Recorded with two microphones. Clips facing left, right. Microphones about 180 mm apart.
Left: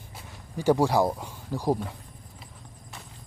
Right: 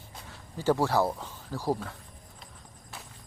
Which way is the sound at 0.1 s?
15° left (ahead or behind).